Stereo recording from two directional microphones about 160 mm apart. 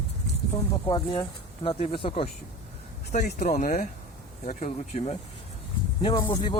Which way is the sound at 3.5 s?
55° left (ahead or behind).